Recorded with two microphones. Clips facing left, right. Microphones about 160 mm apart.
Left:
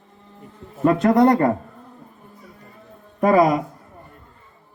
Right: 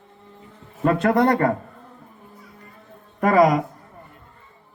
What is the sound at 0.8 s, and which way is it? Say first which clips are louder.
Speech: left 3 dB; 20° left (ahead or behind).